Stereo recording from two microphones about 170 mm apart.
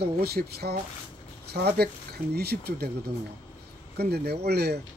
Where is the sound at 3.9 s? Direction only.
70° right (ahead or behind).